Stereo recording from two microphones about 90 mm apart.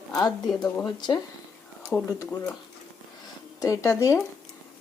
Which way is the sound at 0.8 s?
55° left (ahead or behind).